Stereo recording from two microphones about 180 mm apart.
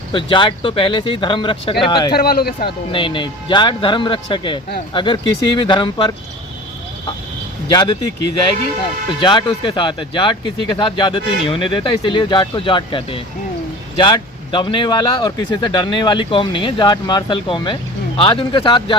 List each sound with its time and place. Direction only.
0.1 s speech: 25° left (ahead or behind)
2.1 s speech: 60° left (ahead or behind)
2.6 s speech: 25° left (ahead or behind)
7.7 s speech: 25° left (ahead or behind)
9.2 s speech: 25° left (ahead or behind)